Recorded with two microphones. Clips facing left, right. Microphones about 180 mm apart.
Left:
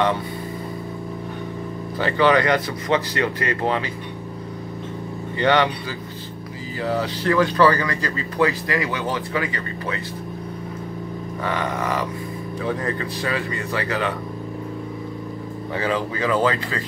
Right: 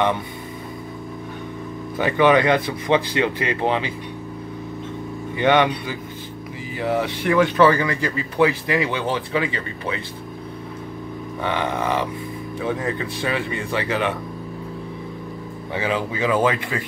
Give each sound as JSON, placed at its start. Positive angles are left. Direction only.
{"t": 2.0, "sound": "speech", "side_deg": -15}
{"t": 5.4, "sound": "speech", "side_deg": -20}
{"t": 6.8, "sound": "speech", "side_deg": -20}
{"t": 11.5, "sound": "speech", "side_deg": -25}
{"t": 15.7, "sound": "speech", "side_deg": -10}